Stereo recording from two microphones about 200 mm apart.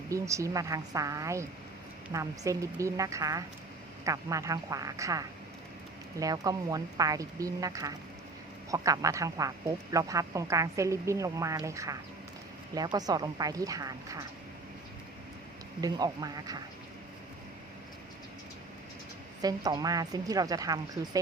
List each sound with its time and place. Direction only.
0.1 s a woman's voice: 15° right (ahead or behind)
15.8 s a woman's voice: 20° right (ahead or behind)
19.4 s a woman's voice: 20° right (ahead or behind)